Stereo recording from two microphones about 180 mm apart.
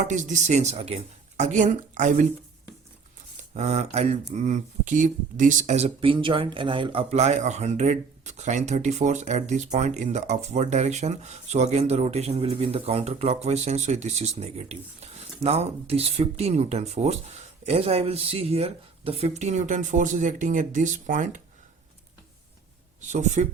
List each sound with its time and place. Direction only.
0.0 s speech: 45° right (ahead or behind)
3.5 s speech: 35° right (ahead or behind)
23.1 s speech: 40° right (ahead or behind)